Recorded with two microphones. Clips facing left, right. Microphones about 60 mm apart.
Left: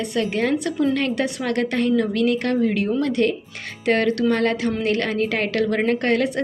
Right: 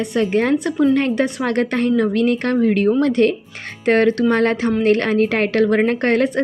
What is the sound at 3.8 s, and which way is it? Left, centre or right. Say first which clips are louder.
A woman's voice: right 4 dB; right.